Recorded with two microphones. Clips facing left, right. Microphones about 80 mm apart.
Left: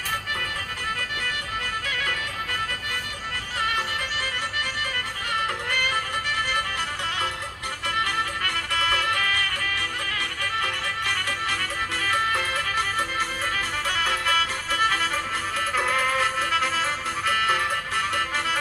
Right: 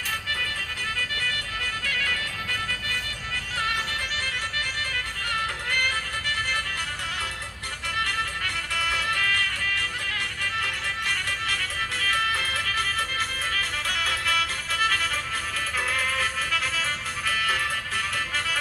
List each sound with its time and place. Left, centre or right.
1.9 s music: left
8.7 s music: left
11.3 s music: left
16.1 s music: centre
16.5 s music: left
17.5 s music: centre